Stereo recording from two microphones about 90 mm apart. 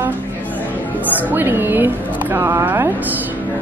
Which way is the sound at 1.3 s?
25° right (ahead or behind).